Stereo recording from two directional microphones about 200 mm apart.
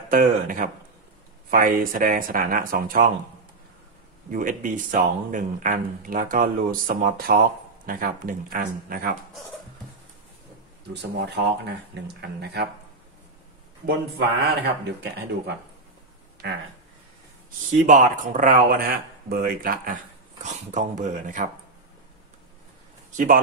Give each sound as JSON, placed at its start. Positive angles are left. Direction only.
{"t": 0.1, "sound": "speech", "side_deg": -40}
{"t": 4.3, "sound": "speech", "side_deg": -40}
{"t": 10.9, "sound": "speech", "side_deg": -55}
{"t": 13.8, "sound": "speech", "side_deg": -50}
{"t": 16.4, "sound": "speech", "side_deg": -60}
{"t": 17.8, "sound": "speech", "side_deg": -40}
{"t": 23.1, "sound": "a man's voice", "side_deg": -45}